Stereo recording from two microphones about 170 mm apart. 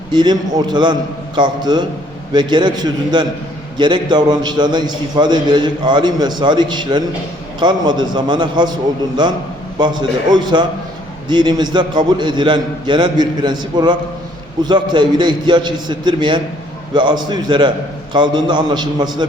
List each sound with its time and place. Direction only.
0.1 s a man's voice: 25° right (ahead or behind)
9.7 s a man's voice: 25° right (ahead or behind)